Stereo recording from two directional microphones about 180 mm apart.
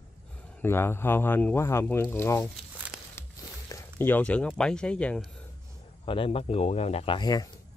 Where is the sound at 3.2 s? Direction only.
15° left (ahead or behind).